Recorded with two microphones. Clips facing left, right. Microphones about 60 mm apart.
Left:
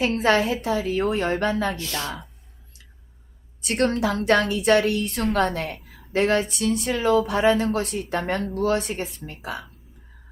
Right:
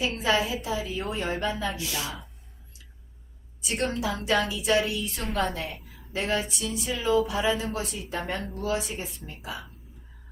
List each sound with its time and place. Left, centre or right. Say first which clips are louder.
0.0 s a woman's voice: left 6 dB; left
1.7 s speech: left 3 dB; centre
3.6 s a woman's voice: left 6 dB; left
5.9 s a sound: left 8 dB; left
6.5 s a woman's voice: left 7 dB; left